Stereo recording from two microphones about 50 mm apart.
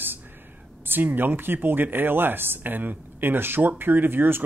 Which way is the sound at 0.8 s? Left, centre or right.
Right.